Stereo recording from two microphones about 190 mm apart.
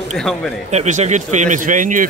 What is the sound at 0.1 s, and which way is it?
Speech, centre (ahead or behind).